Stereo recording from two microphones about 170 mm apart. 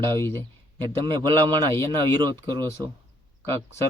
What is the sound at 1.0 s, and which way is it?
Speech, 25° right (ahead or behind).